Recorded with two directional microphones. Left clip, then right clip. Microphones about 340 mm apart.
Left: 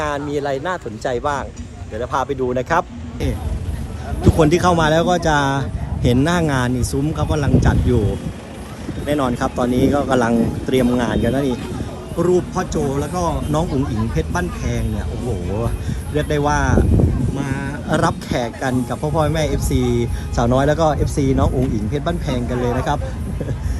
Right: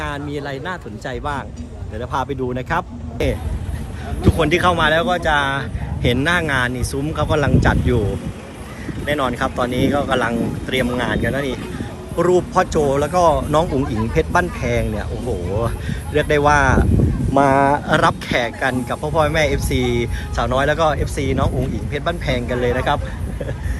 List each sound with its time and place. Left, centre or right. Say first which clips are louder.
0.0 s speech: left 5 dB; centre
4.2 s speech: left 1 dB; centre
9.0 s speech: even; centre
12.8 s speech: right 6 dB; centre
16.6 s speech: right 3 dB; centre
17.9 s speech: right 3 dB; centre
19.8 s speech: left 1 dB; right
20.3 s speech: left 1 dB; centre